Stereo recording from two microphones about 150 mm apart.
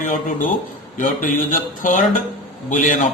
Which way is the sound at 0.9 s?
60° left (ahead or behind).